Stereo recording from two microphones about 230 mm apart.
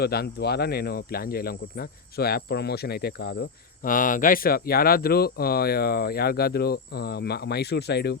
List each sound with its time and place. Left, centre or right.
0.0 s speech: left